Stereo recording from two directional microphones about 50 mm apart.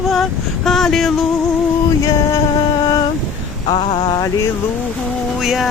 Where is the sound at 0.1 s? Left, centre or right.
Centre.